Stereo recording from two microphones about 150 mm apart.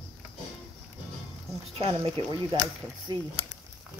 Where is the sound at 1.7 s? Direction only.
35° right (ahead or behind).